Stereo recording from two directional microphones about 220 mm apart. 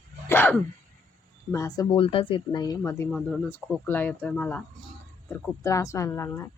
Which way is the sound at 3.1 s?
Centre (ahead or behind).